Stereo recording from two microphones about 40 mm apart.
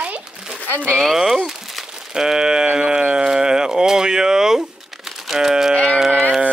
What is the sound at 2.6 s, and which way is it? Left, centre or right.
Sheep, right.